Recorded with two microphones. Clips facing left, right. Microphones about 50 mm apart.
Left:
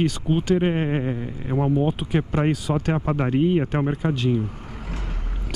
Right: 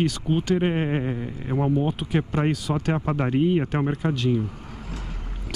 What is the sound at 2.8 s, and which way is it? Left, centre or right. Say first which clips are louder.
Speech: left 1 dB; centre.